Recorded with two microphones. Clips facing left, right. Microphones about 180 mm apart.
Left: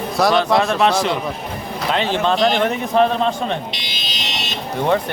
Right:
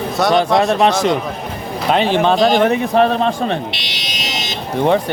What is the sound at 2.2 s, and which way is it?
A man's voice, 55° right (ahead or behind).